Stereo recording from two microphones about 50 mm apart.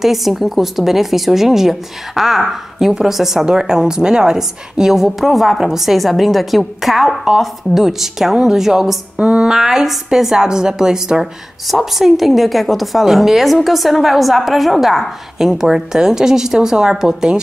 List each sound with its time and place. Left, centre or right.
0.0 s a woman's voice: centre
9.2 s a sound: right
9.5 s a woman's voice: centre